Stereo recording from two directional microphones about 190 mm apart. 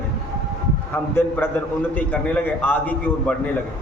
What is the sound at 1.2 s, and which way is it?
A man's voice, 10° left (ahead or behind).